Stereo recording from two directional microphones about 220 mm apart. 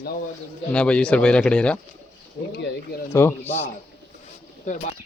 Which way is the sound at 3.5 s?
30° left (ahead or behind).